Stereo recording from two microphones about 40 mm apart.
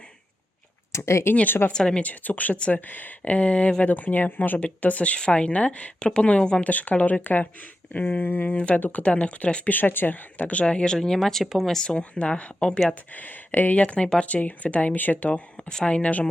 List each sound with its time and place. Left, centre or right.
1.3 s a woman's voice: left
1.7 s speech: centre
2.0 s speech: left
2.8 s speech: left
4.8 s speech: left
6.7 s speech: left
8.2 s speech: left
8.5 s speech: left
9.6 s speech: left; by 11.2 s centre
11.2 s speech: centre
11.8 s speech: left
12.9 s speech: left
15.7 s speech: left